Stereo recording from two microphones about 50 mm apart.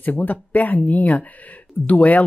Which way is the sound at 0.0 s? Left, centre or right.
Left.